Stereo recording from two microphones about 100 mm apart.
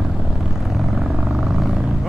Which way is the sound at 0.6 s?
Centre (ahead or behind).